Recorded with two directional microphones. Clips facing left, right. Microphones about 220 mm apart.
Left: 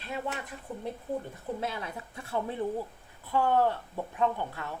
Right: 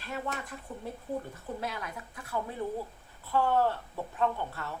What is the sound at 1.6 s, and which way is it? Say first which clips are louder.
Speech: left 2 dB; 25° left (ahead or behind).